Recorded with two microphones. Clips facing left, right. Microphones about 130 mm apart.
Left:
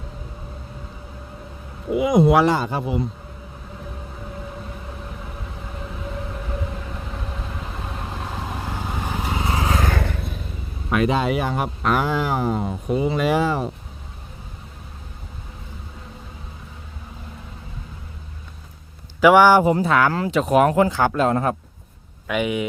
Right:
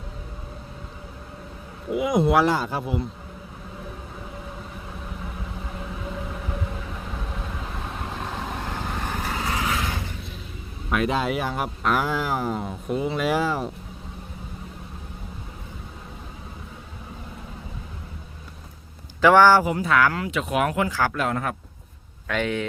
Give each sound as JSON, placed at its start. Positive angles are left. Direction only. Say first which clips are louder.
{"t": 1.9, "sound": "speech", "louder": "left 4 dB", "side_deg": 0}
{"t": 7.3, "sound": "vehicle", "louder": "left 1 dB", "side_deg": 0}
{"t": 9.7, "sound": "vehicle", "louder": "left 6 dB", "side_deg": 50}
{"t": 10.0, "sound": "vehicle", "louder": "left 8 dB", "side_deg": 60}
{"t": 10.9, "sound": "speech", "louder": "left 4 dB", "side_deg": 0}
{"t": 19.2, "sound": "a man's voice", "louder": "left 2 dB", "side_deg": 15}
{"t": 19.6, "sound": "speech", "louder": "left 3 dB", "side_deg": 30}
{"t": 22.3, "sound": "a man's voice", "louder": "left 3 dB", "side_deg": 10}